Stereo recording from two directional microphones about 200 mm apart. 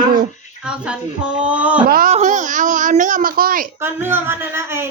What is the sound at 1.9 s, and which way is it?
A woman's voice, 45° right (ahead or behind).